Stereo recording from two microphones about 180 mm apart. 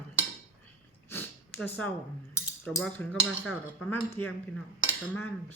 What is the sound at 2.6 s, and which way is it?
Speech, centre (ahead or behind).